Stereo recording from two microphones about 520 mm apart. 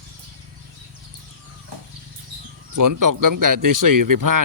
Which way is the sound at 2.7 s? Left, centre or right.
Right.